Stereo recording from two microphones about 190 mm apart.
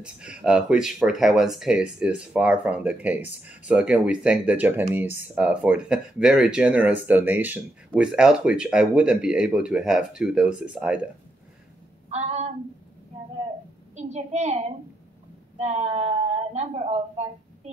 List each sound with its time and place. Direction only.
0.0 s speech: 5° right (ahead or behind)
12.1 s a sound: 35° right (ahead or behind)
13.9 s a woman's voice: 35° right (ahead or behind)